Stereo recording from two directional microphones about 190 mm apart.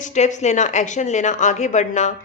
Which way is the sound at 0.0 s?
40° left (ahead or behind).